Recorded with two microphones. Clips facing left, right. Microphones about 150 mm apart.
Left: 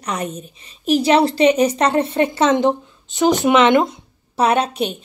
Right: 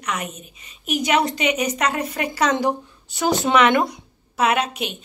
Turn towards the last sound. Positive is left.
turn(degrees=30)  # may be behind; listen again after turning